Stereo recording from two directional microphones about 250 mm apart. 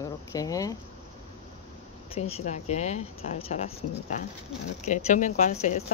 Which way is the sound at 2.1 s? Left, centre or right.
Left.